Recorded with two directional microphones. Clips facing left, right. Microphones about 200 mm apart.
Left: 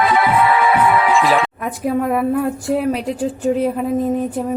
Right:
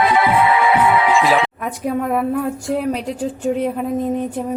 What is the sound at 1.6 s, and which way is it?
Speech, centre (ahead or behind).